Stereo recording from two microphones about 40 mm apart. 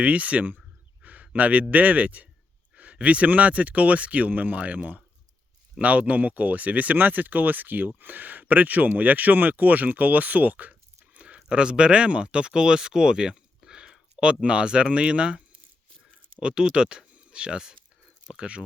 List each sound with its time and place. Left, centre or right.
0.0 s speech: right
1.0 s a sound: right
1.7 s speech: right
11.3 s speech: centre